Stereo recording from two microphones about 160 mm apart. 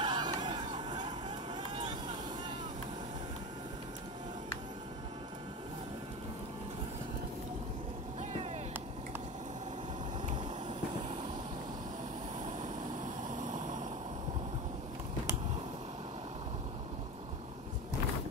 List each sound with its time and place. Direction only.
0.0 s vehicle: 25° right (ahead or behind)
12.6 s vehicle: 50° right (ahead or behind)